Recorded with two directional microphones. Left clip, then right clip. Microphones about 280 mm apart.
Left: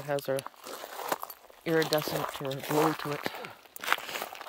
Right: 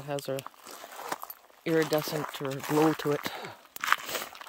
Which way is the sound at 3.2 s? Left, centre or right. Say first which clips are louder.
Even; centre.